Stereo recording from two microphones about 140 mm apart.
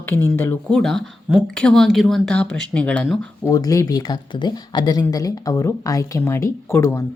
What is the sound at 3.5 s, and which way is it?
Speech, 25° left (ahead or behind).